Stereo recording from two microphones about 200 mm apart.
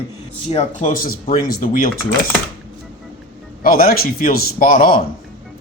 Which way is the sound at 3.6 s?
45° left (ahead or behind).